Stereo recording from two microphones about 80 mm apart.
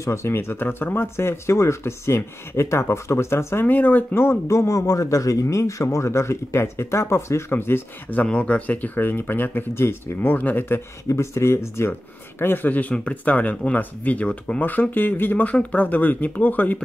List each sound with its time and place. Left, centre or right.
0.0 s speech: left
11.1 s speech: left